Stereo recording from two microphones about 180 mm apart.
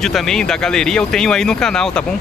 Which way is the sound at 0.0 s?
Centre (ahead or behind).